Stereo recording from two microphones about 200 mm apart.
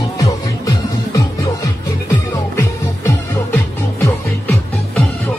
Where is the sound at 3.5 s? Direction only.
10° left (ahead or behind).